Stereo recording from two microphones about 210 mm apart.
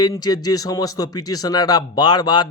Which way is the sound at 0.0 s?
20° left (ahead or behind).